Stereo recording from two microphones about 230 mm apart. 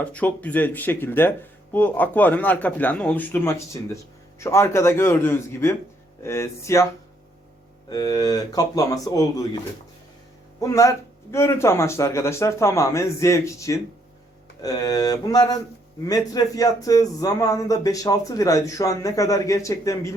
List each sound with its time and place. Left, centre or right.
0.0 s a man's voice: centre
7.9 s a man's voice: centre
10.6 s a man's voice: centre